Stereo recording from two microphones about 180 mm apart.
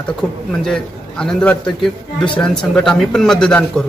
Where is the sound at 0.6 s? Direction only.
5° left (ahead or behind).